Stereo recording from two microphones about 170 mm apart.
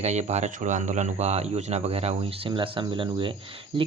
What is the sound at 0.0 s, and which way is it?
Speech, 40° right (ahead or behind).